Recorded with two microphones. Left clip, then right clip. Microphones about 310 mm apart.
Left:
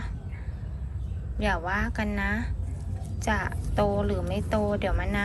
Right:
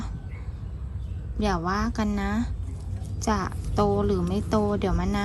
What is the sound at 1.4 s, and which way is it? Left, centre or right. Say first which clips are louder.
A woman's voice: right 1 dB; centre.